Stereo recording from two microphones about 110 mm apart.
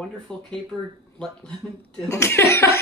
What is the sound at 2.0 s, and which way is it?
Speech, 25° left (ahead or behind).